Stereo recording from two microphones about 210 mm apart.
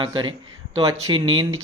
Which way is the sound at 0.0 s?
20° right (ahead or behind).